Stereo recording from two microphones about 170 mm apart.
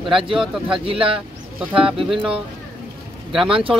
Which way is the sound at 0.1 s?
30° right (ahead or behind).